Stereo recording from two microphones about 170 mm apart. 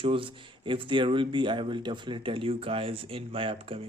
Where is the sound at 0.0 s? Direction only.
30° right (ahead or behind).